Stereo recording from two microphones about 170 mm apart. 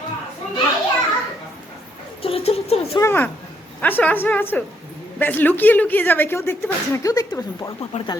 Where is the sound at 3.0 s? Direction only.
15° left (ahead or behind).